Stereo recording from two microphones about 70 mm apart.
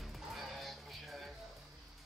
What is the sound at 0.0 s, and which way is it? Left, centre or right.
Music, centre.